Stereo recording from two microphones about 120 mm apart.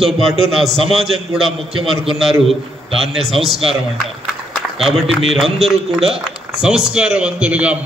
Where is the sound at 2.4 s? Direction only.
55° right (ahead or behind).